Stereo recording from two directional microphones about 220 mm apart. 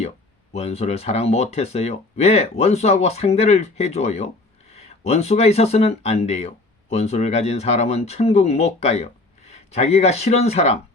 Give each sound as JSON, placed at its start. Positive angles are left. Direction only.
{"t": 0.5, "sound": "speech", "side_deg": 30}